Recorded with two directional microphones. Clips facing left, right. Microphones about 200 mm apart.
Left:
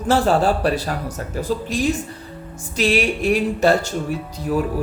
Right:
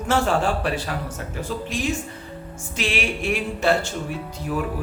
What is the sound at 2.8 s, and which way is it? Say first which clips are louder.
Speech: left 7 dB; 40° left (ahead or behind).